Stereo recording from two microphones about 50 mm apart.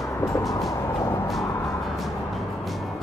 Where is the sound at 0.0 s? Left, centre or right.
Left.